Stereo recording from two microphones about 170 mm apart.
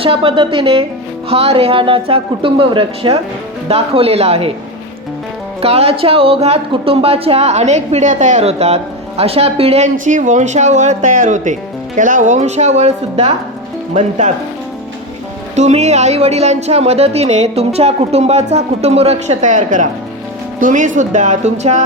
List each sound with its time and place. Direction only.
0.0 s speech: 30° right (ahead or behind)
5.6 s speech: 35° right (ahead or behind)
15.5 s speech: 40° right (ahead or behind)